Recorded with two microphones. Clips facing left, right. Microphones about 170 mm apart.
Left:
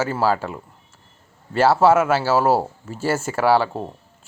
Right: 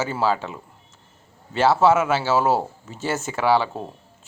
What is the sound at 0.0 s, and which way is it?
Speech, 5° left (ahead or behind).